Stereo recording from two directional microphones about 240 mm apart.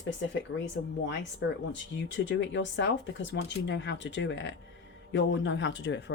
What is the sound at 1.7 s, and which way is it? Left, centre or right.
Speech, left.